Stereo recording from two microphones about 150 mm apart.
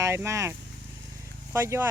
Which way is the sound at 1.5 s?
15° right (ahead or behind).